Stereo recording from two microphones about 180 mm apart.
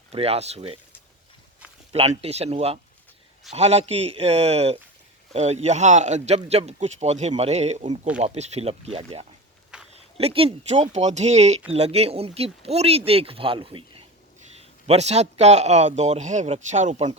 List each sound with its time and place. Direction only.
0.1 s speech: 35° right (ahead or behind)
1.9 s speech: 35° right (ahead or behind)